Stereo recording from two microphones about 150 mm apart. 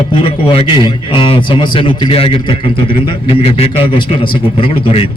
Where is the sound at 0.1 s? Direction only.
35° left (ahead or behind).